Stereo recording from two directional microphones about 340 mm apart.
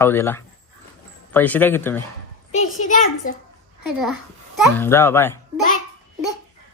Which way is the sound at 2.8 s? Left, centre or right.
Left.